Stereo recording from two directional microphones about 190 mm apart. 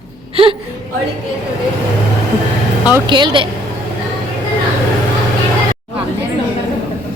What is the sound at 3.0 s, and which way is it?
Speech, 25° right (ahead or behind).